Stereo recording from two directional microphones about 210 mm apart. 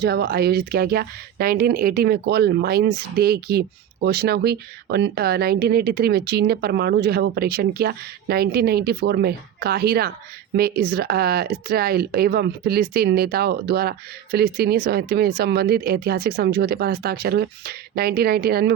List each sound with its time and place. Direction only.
0.0 s speech: 50° right (ahead or behind)